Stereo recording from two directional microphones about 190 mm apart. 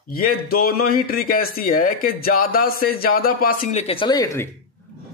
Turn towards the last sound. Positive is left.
turn(degrees=15)  # may be behind; listen again after turning